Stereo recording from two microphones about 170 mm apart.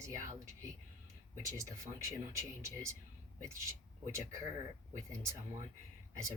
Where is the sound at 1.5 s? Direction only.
15° right (ahead or behind).